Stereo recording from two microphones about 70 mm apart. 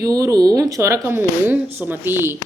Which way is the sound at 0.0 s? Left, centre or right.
Right.